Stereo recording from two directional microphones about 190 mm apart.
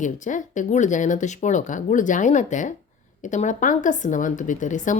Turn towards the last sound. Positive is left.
turn(degrees=40)  # may be behind; listen again after turning